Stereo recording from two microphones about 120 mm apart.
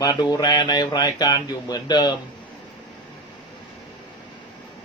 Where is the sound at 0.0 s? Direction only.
35° left (ahead or behind).